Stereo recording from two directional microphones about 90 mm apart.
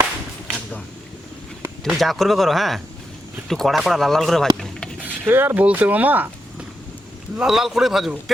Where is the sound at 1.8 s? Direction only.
Centre (ahead or behind).